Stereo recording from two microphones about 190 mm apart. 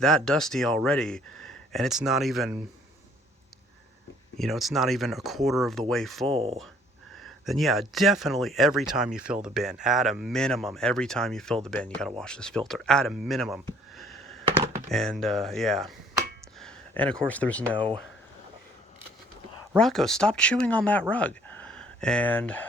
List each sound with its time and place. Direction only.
0.0 s speech: centre (ahead or behind)
4.4 s speech: centre (ahead or behind)
6.2 s speech: 30° right (ahead or behind)
7.2 s speech: centre (ahead or behind)
13.9 s a sound: centre (ahead or behind)
14.8 s speech: centre (ahead or behind)
19.7 s speech: centre (ahead or behind)